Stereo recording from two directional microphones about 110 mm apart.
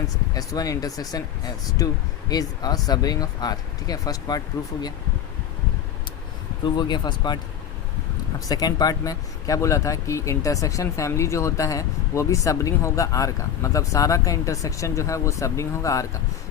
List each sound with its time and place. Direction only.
0.3 s speech: 35° left (ahead or behind)
6.7 s speech: 40° left (ahead or behind)
8.4 s speech: 35° left (ahead or behind)